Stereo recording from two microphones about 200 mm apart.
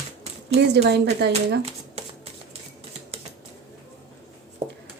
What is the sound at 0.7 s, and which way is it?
Speech, 55° right (ahead or behind).